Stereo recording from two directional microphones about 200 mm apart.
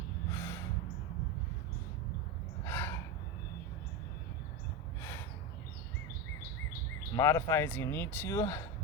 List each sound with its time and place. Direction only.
0.3 s snort: 15° left (ahead or behind)
2.6 s gasp: 10° left (ahead or behind)
7.2 s speech: 15° left (ahead or behind)